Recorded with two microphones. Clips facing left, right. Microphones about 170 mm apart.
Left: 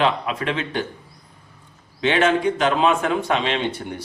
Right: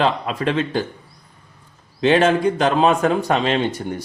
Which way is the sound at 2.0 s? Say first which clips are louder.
Right 3 dB; 35° right (ahead or behind).